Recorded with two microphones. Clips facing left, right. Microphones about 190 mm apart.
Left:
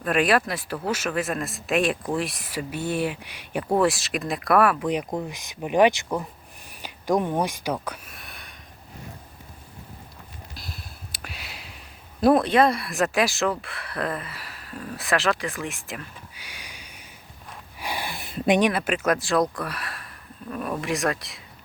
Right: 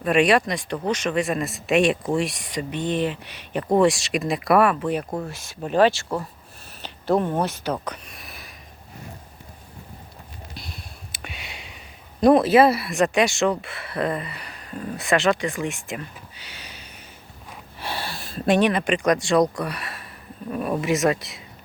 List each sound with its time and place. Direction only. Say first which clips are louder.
0.0 s speech: right 3 dB; centre (ahead or behind)
5.2 s speech: right 1 dB; 15° left (ahead or behind); by 8.5 s centre (ahead or behind)
10.5 s a sound: right 1 dB; centre (ahead or behind)
12.2 s speech: right 3 dB; centre (ahead or behind)
16.3 s a sound: right 2 dB; 10° left (ahead or behind)
17.7 s speech: even; 15° left (ahead or behind)